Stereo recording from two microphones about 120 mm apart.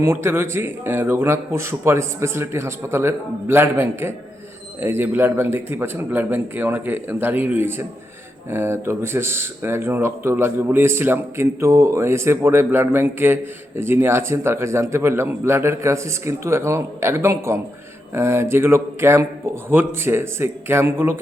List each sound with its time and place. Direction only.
0.0 s a man's voice: 20° right (ahead or behind)